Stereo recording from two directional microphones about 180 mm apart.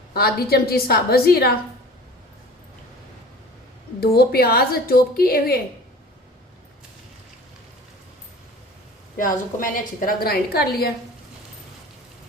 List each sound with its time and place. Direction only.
0.1 s a woman's voice: 60° left (ahead or behind)
4.0 s a woman's voice: 60° left (ahead or behind)
9.1 s a woman's voice: 50° left (ahead or behind)